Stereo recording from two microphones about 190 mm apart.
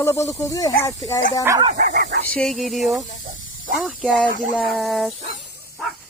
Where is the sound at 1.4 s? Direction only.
15° right (ahead or behind).